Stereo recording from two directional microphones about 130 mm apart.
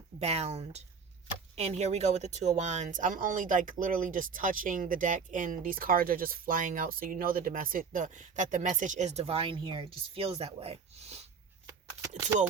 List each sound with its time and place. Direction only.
0.2 s speech: 55° right (ahead or behind)